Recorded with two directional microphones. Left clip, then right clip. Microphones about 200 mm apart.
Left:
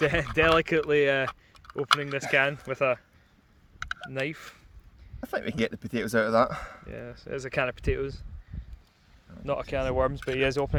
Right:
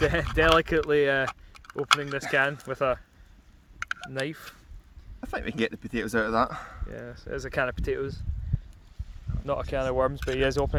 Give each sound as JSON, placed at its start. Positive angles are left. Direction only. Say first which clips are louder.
{"t": 0.0, "sound": "speech", "louder": "even", "side_deg": 5}
{"t": 5.2, "sound": "speech", "louder": "even", "side_deg": 40}
{"t": 6.9, "sound": "speech", "louder": "even", "side_deg": 5}
{"t": 9.5, "sound": "speech", "louder": "right 1 dB", "side_deg": 5}